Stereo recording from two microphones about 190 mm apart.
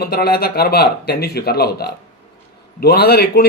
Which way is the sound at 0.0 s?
55° left (ahead or behind).